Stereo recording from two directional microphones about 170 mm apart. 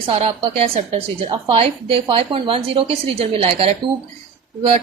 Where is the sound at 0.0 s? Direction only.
35° right (ahead or behind).